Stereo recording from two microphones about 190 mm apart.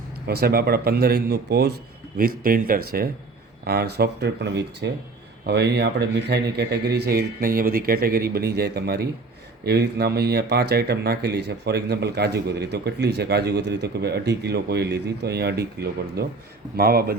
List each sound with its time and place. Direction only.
0.3 s speech: 55° right (ahead or behind)